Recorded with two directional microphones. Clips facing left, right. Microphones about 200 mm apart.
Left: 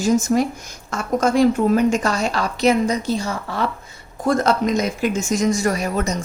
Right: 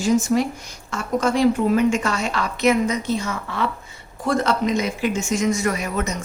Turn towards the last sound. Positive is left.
turn(degrees=35)  # may be behind; listen again after turning